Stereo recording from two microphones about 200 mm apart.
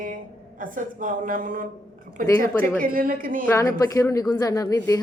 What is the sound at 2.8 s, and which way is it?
Speech, 45° right (ahead or behind).